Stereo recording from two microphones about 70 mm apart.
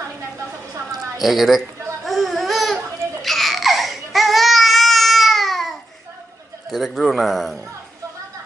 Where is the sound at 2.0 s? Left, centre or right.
Centre.